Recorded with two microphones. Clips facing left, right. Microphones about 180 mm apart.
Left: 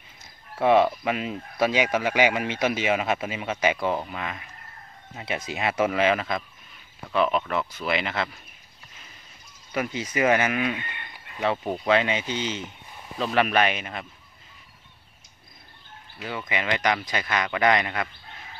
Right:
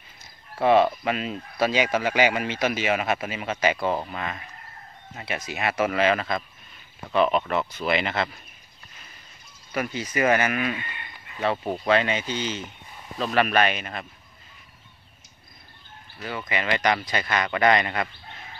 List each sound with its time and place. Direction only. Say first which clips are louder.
0.6 s speech: even; 10° left (ahead or behind)
3.7 s speech: right 1 dB; 10° right (ahead or behind)
4.1 s speech: right 1 dB; 5° left (ahead or behind)
5.2 s speech: even; 25° left (ahead or behind)
7.2 s speech: right 2 dB; centre (ahead or behind)
9.8 s speech: even; 15° left (ahead or behind)
11.5 s speech: even; centre (ahead or behind)
11.9 s speech: even; 15° left (ahead or behind)
16.2 s speech: right 1 dB; centre (ahead or behind)